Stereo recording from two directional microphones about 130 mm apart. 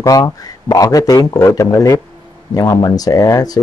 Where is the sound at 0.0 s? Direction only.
25° left (ahead or behind).